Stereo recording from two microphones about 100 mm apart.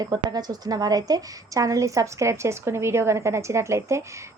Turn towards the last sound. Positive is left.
turn(degrees=-30)  # may be behind; listen again after turning